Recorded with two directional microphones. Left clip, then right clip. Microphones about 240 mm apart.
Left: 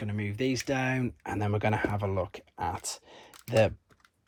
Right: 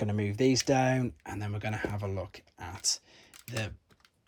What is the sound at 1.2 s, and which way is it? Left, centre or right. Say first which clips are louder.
Speech: left 8 dB; centre.